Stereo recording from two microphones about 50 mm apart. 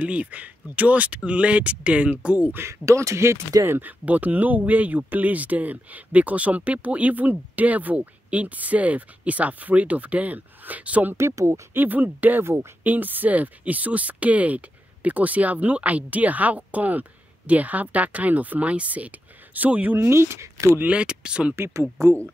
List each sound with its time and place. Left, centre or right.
0.0 s speech: right
2.5 s speech: right
3.8 s speech: right
11.1 s speech: right
11.7 s speech: right
20.0 s speech: right
20.8 s speech: right
21.7 s speech: right